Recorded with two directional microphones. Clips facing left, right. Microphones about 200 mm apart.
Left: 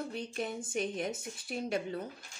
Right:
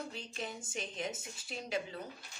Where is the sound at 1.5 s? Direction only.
55° left (ahead or behind).